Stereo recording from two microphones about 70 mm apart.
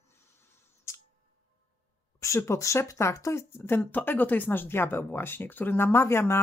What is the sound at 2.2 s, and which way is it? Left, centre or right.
Speech, left.